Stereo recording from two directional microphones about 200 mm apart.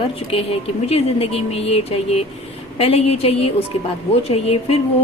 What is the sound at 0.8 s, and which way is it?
A woman's voice, 30° left (ahead or behind).